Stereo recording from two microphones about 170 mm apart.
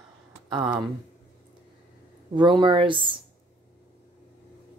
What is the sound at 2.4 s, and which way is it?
Speech, 30° right (ahead or behind).